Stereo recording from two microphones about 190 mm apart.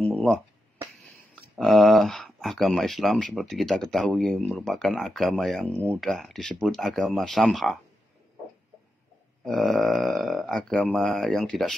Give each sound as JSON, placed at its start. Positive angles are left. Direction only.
{"t": 1.6, "sound": "speech", "side_deg": 0}
{"t": 9.4, "sound": "speech", "side_deg": 0}